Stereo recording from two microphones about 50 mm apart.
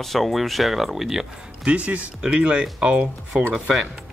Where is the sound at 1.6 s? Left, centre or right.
Right.